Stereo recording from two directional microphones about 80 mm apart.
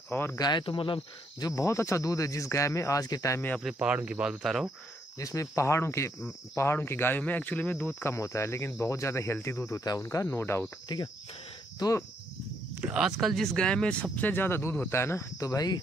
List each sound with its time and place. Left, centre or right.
0.1 s speech: left
0.4 s speech: left
1.5 s speech: left
3.6 s speech: centre
5.2 s speech: left
10.1 s speech: left
10.9 s speech: left
12.9 s speech: centre
14.1 s speech: left